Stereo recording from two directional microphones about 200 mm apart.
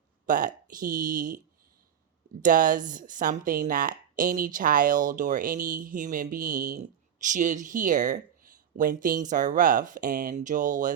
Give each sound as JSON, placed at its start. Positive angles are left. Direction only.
{"t": 0.3, "sound": "speech", "side_deg": -40}
{"t": 2.4, "sound": "speech", "side_deg": -40}